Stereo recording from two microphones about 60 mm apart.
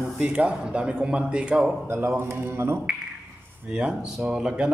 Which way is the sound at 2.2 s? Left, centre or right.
Right.